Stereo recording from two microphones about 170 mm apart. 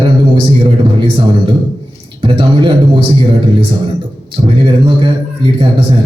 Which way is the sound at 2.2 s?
30° right (ahead or behind).